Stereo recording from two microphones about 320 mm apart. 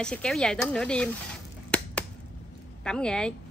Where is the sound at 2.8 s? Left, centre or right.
Centre.